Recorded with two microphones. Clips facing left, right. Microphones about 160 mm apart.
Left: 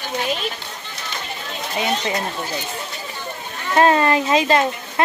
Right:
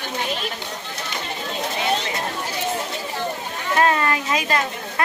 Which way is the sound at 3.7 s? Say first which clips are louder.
Left 4 dB; 30° left (ahead or behind).